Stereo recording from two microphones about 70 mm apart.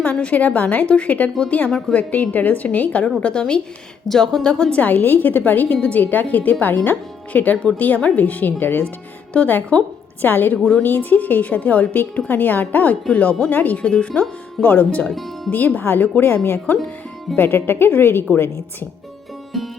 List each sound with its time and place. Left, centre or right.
0.0 s a woman's voice: left
4.8 s a woman's voice: left
14.6 s a woman's voice: left
19.5 s music: centre